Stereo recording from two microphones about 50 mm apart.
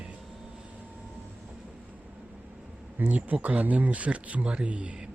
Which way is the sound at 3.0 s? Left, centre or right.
Right.